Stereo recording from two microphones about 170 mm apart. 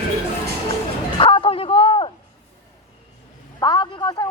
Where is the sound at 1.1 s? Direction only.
30° left (ahead or behind).